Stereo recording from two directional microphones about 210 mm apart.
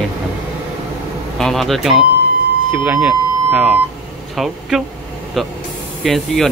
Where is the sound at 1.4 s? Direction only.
Centre (ahead or behind).